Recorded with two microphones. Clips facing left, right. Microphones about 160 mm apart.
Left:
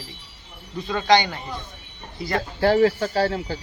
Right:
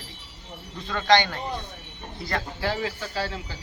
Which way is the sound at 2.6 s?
40° left (ahead or behind).